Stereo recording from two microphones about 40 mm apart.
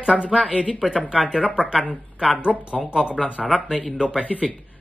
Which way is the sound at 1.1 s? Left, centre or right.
Right.